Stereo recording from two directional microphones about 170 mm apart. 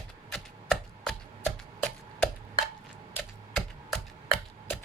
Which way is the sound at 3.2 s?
5° left (ahead or behind).